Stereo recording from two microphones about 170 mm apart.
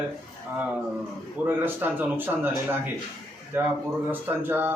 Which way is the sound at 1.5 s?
10° right (ahead or behind).